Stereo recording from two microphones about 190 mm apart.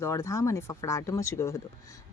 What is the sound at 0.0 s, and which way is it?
A woman's voice, 15° left (ahead or behind).